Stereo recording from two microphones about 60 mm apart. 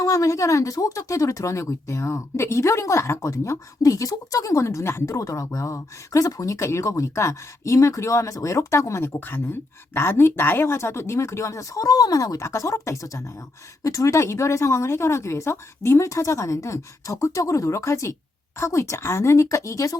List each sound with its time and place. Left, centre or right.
0.0 s speech: left
9.9 s speech: left
12.4 s speech: left